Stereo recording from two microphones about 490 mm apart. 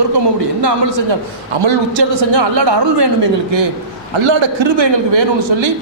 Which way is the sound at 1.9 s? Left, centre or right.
Right.